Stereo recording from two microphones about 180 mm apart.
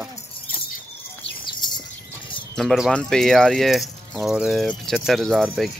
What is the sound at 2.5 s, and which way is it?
Speech, centre (ahead or behind).